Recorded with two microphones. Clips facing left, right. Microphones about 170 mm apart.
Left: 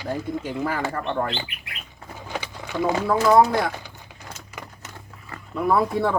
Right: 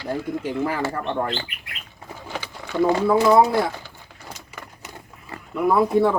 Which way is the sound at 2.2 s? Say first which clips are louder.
Left 1 dB; 15° left (ahead or behind).